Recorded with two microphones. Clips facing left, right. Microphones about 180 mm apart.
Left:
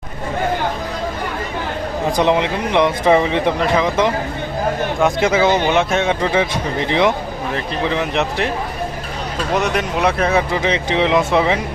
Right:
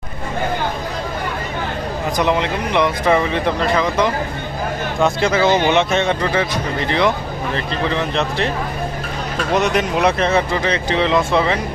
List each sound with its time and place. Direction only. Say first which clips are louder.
2.1 s speech: left 2 dB; 20° left (ahead or behind); by 6.1 s 5° left (ahead or behind)
6.2 s speech: left 1 dB; 15° left (ahead or behind)
9.6 s speech: right 2 dB; centre (ahead or behind)